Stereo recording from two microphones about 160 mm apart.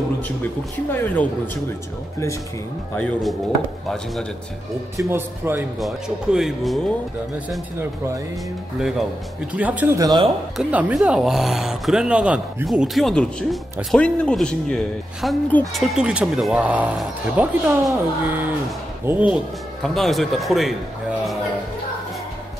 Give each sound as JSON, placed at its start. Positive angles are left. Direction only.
{"t": 0.9, "sound": "speech", "side_deg": 10}
{"t": 3.0, "sound": "speech", "side_deg": 5}
{"t": 4.9, "sound": "speech", "side_deg": -15}
{"t": 5.8, "sound": "speech", "side_deg": 0}
{"t": 8.7, "sound": "speech", "side_deg": 0}
{"t": 9.9, "sound": "speech", "side_deg": -25}
{"t": 10.6, "sound": "speech", "side_deg": -5}